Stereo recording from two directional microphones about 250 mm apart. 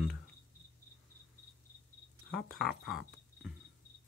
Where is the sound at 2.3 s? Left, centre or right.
Left.